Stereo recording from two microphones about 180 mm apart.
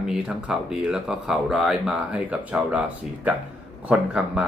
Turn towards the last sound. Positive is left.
turn(degrees=-5)  # may be behind; listen again after turning